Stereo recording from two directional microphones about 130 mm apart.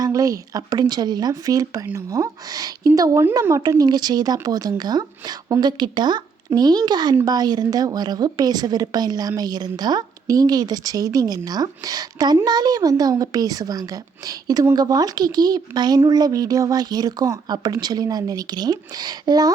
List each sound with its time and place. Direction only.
0.0 s a woman's voice: 25° right (ahead or behind)